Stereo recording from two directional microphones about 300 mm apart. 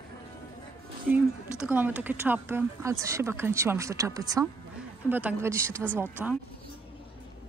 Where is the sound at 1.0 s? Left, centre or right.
Centre.